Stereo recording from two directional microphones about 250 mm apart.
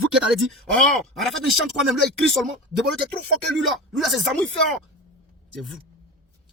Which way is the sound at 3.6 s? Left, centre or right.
Centre.